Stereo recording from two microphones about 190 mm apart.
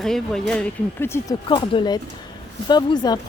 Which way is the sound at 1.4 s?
25° left (ahead or behind).